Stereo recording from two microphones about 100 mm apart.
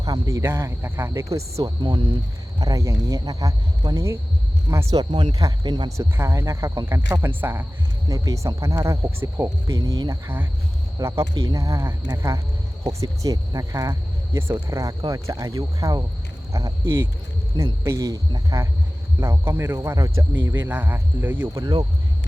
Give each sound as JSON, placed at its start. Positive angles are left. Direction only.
{"t": 0.0, "sound": "speech", "side_deg": -35}
{"t": 6.0, "sound": "speech", "side_deg": -30}
{"t": 8.0, "sound": "speech", "side_deg": -35}
{"t": 21.6, "sound": "speech", "side_deg": -40}